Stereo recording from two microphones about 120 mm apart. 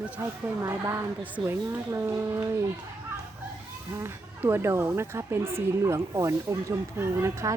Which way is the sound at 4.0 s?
20° right (ahead or behind).